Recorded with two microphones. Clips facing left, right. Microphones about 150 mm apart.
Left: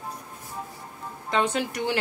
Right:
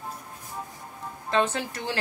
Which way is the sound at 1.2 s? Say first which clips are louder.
Even; 15° left (ahead or behind).